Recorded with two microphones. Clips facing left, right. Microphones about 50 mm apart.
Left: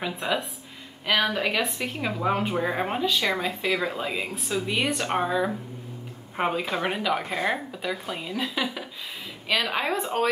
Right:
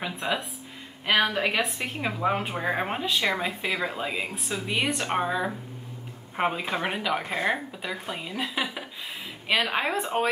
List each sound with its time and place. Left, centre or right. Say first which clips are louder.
0.0 s a woman's voice: left 1 dB; centre
1.0 s a woman's voice: even; centre